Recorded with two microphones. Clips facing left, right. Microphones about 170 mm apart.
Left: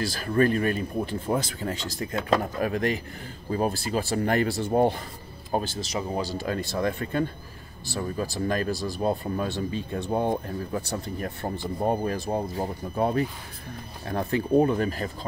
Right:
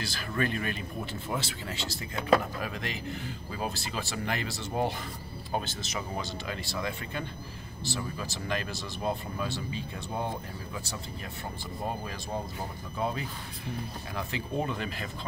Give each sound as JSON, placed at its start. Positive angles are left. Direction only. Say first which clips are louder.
{"t": 0.0, "sound": "speech", "louder": "left 9 dB", "side_deg": 40}
{"t": 2.1, "sound": "speech", "louder": "left 1 dB", "side_deg": -5}
{"t": 2.4, "sound": "speech", "louder": "left 9 dB", "side_deg": 40}
{"t": 5.5, "sound": "speech", "louder": "left 6 dB", "side_deg": 35}
{"t": 9.6, "sound": "speech", "louder": "left 8 dB", "side_deg": 50}